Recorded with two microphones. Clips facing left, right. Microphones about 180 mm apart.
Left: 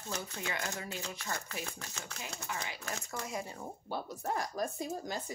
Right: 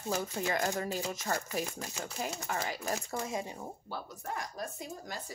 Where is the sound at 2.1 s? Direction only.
40° right (ahead or behind).